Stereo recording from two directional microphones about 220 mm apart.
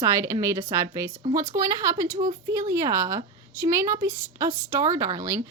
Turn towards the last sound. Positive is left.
turn(degrees=-15)  # may be behind; listen again after turning